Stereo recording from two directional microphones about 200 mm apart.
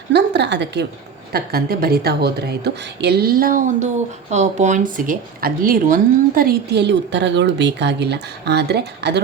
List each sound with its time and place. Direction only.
0.1 s a woman's voice: 60° right (ahead or behind)